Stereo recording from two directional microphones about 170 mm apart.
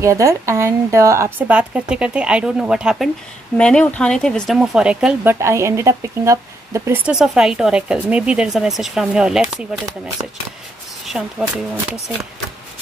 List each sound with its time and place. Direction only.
0.0 s speech: 15° right (ahead or behind)
3.5 s speech: 5° left (ahead or behind); by 7.0 s 15° right (ahead or behind)
7.1 s speech: 5° right (ahead or behind)
10.2 s speech: 15° right (ahead or behind)
11.1 s speech: 5° right (ahead or behind)